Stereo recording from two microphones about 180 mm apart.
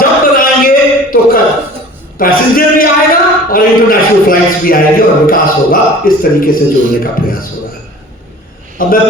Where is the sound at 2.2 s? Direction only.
55° left (ahead or behind).